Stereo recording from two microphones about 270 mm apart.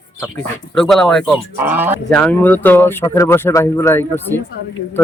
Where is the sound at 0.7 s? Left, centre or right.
Centre.